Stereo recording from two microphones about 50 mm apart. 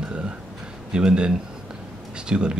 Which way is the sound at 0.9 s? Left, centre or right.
Centre.